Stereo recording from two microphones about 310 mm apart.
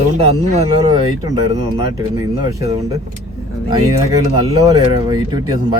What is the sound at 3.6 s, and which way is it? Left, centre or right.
Speech, centre.